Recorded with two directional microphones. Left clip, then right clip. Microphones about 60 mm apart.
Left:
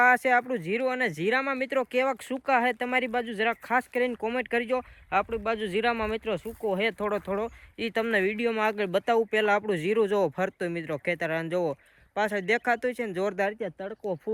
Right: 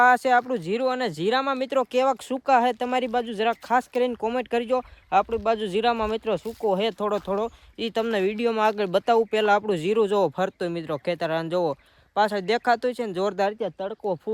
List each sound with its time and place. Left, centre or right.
0.0 s speech: right
5.2 s speech: right
5.5 s speech: right
6.7 s speech: right